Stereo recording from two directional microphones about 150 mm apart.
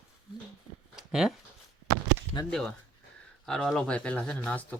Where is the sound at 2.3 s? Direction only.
30° left (ahead or behind).